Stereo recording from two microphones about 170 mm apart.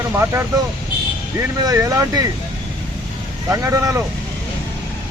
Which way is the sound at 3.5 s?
20° right (ahead or behind).